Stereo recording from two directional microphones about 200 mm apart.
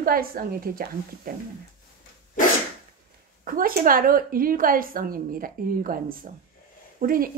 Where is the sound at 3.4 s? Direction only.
45° right (ahead or behind).